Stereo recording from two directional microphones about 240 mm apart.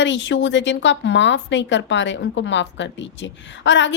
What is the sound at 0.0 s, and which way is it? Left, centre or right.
A woman's voice, left.